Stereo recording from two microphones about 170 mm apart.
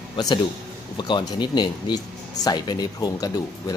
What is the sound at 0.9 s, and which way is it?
Speech, 25° left (ahead or behind).